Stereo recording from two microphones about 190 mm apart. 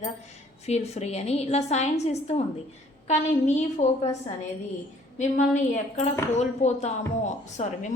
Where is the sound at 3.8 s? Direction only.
40° left (ahead or behind).